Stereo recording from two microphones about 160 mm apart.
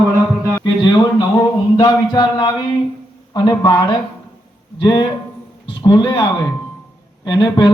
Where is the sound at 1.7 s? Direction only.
25° left (ahead or behind).